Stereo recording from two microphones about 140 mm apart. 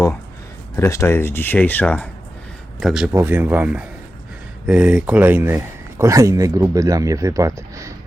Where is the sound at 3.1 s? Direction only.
15° right (ahead or behind).